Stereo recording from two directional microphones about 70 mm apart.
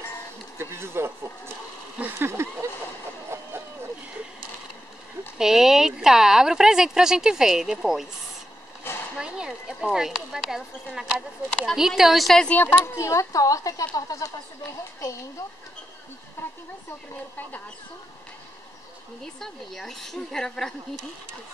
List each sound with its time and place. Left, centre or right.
0.6 s speech: right
3.3 s a sound: right
5.4 s speech: centre
9.1 s a woman's voice: centre
12.4 s speech: left
12.8 s speech: left
19.4 s a woman's voice: centre